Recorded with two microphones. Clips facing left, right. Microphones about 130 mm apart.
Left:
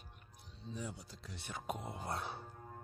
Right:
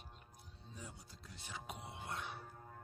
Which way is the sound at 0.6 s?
90° left.